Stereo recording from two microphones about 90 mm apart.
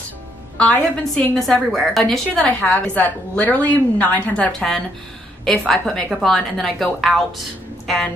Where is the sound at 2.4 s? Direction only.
15° left (ahead or behind).